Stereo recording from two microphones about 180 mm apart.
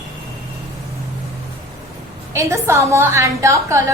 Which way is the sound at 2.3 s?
15° right (ahead or behind).